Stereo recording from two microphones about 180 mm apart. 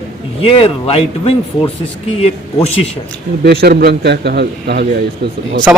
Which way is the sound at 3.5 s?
60° right (ahead or behind).